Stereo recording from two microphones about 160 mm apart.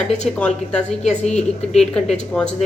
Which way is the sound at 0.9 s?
45° left (ahead or behind).